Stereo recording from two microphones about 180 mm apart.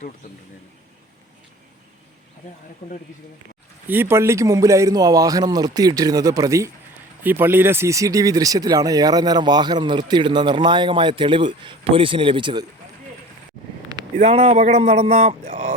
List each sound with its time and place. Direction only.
2.8 s speech: 40° left (ahead or behind)
3.8 s speech: 10° right (ahead or behind)
14.2 s a man's voice: 35° right (ahead or behind)